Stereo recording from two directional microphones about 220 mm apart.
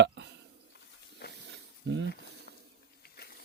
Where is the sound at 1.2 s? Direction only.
50° left (ahead or behind).